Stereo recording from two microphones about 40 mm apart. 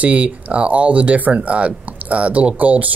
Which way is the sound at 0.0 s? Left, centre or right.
Right.